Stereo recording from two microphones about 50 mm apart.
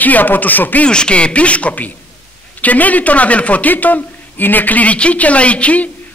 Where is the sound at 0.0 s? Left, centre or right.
Left.